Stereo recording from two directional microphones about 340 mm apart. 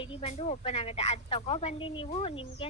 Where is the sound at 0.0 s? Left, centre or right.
Centre.